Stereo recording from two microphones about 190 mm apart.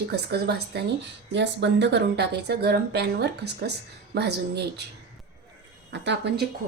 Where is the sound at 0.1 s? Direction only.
60° right (ahead or behind).